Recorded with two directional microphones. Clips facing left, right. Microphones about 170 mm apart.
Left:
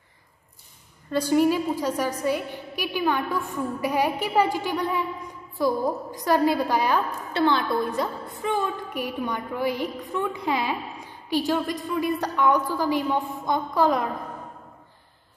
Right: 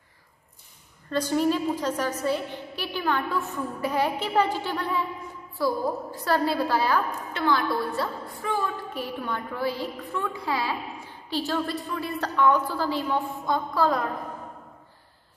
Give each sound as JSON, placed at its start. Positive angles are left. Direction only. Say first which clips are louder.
{"t": 1.1, "sound": "a woman's voice", "louder": "left 3 dB", "side_deg": 10}